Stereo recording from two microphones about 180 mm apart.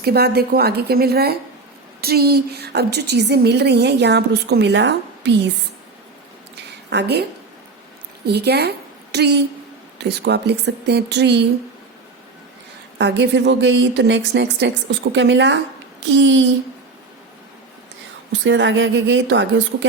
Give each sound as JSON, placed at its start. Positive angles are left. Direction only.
{"t": 0.0, "sound": "a woman's voice", "side_deg": -60}
{"t": 6.9, "sound": "a woman's voice", "side_deg": -70}
{"t": 13.0, "sound": "a woman's voice", "side_deg": -75}
{"t": 18.3, "sound": "speech", "side_deg": -85}